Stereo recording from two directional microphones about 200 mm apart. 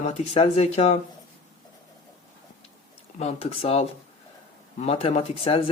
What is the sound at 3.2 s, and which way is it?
Speech, 30° left (ahead or behind).